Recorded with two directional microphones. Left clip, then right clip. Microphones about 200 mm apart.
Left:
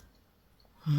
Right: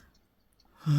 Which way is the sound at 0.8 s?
30° right (ahead or behind).